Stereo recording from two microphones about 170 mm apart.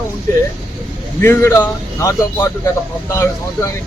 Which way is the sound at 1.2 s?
15° left (ahead or behind).